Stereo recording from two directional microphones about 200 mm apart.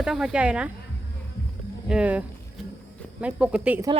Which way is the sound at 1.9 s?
5° right (ahead or behind).